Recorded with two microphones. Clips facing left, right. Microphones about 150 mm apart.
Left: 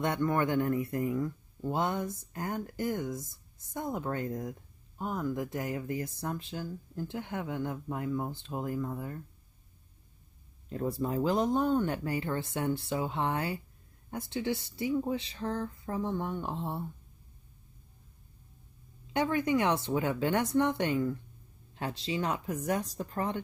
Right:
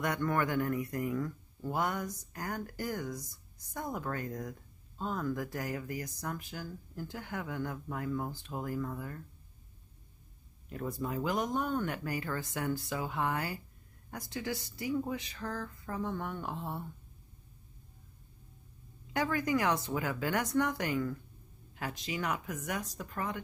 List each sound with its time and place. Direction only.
0.0 s speech: 20° left (ahead or behind)
10.7 s speech: 30° left (ahead or behind)
19.1 s speech: 25° left (ahead or behind)